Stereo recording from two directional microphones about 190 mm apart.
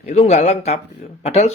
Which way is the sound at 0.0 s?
35° left (ahead or behind).